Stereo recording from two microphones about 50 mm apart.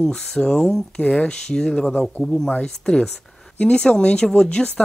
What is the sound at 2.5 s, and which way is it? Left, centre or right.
Speech, centre.